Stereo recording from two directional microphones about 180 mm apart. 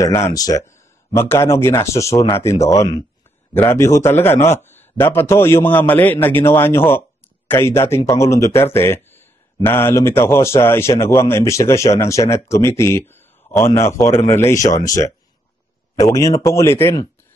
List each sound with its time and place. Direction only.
0.0 s a man's voice: 15° left (ahead or behind)